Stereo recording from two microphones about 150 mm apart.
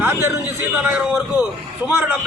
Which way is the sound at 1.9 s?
10° right (ahead or behind).